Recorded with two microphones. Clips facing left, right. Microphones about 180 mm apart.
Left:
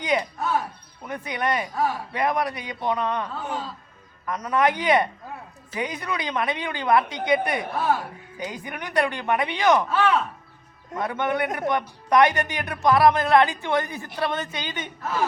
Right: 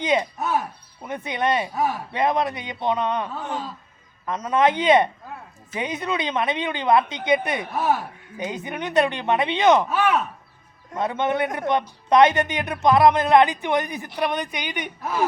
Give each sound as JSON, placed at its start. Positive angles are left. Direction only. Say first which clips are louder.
{"t": 0.0, "sound": "speech", "louder": "right 2 dB", "side_deg": -20}